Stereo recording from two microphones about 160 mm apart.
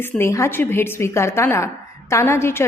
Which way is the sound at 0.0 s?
15° left (ahead or behind).